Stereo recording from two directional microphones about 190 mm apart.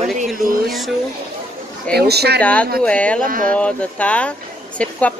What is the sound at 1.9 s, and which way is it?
Speech, 55° right (ahead or behind).